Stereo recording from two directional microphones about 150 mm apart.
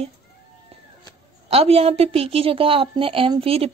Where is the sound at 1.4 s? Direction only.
40° right (ahead or behind).